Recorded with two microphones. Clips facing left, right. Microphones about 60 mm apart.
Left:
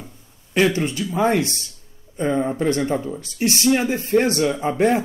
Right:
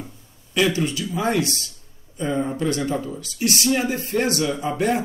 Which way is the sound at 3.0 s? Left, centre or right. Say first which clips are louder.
Left 2 dB; left.